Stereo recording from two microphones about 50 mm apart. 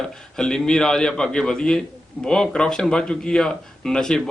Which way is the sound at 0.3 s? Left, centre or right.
Centre.